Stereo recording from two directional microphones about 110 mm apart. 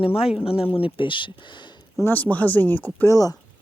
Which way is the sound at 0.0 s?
60° left (ahead or behind).